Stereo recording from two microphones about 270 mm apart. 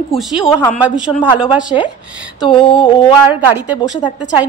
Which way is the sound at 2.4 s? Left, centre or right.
Centre.